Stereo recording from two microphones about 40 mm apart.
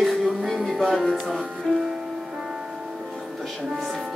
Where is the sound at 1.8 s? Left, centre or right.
Centre.